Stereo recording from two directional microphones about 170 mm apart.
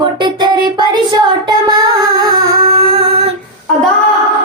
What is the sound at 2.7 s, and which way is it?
Female singing, 35° right (ahead or behind).